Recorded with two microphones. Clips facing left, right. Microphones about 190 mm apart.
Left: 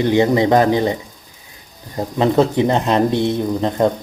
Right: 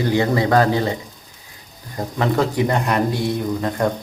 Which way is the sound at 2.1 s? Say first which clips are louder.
Left 5 dB; 20° left (ahead or behind).